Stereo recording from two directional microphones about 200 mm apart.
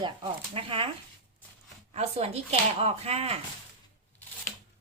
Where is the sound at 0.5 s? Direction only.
25° right (ahead or behind).